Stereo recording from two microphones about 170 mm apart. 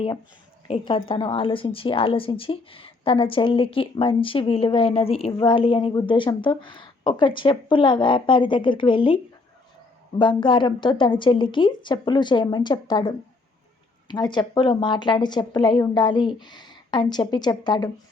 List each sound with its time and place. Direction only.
0.7 s a woman's voice: 30° left (ahead or behind)